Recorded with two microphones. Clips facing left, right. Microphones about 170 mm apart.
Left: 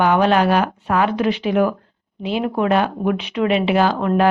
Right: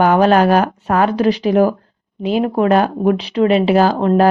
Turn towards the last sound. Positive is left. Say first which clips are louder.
# right 4 dB
turn(degrees=-35)  # may be behind; listen again after turning